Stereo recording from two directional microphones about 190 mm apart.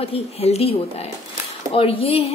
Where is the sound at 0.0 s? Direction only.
30° left (ahead or behind).